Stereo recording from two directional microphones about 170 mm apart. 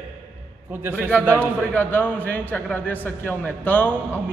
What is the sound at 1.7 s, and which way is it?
A man's voice, 10° left (ahead or behind).